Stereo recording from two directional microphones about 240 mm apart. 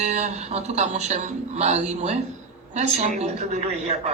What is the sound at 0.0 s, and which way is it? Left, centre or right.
Speech, right.